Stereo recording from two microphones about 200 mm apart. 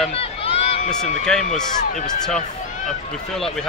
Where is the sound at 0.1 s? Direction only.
30° left (ahead or behind).